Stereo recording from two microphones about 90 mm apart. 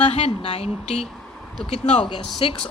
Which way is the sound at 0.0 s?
90° left.